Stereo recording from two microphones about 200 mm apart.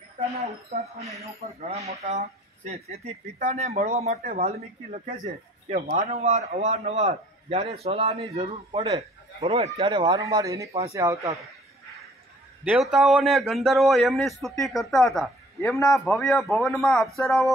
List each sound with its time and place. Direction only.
0.7 s a man's voice: 30° right (ahead or behind)
4.2 s speech: 50° right (ahead or behind)
5.7 s a man's voice: 35° right (ahead or behind); by 11.3 s 15° right (ahead or behind)
12.6 s a man's voice: centre (ahead or behind)